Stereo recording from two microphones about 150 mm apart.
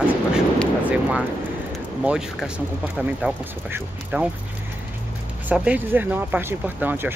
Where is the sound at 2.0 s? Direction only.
5° right (ahead or behind).